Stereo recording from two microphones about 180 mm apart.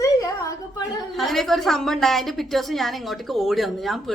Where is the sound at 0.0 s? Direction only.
20° left (ahead or behind).